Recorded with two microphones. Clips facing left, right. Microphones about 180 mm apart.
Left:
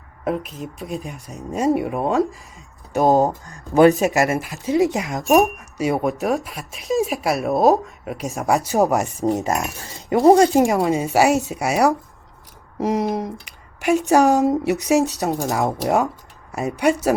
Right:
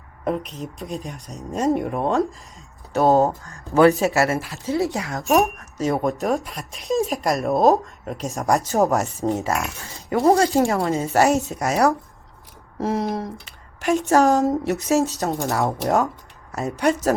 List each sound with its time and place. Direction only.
0.3 s speech: centre (ahead or behind)
15.3 s speech: 5° left (ahead or behind)